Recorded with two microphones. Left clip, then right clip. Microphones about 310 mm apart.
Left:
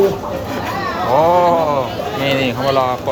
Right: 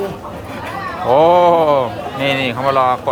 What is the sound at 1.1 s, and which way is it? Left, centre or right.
Speech, right.